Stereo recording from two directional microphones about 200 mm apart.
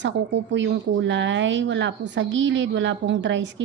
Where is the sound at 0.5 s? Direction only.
65° right (ahead or behind).